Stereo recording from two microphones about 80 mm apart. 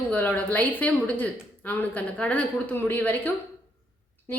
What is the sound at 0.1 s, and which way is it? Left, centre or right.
A woman's voice, centre.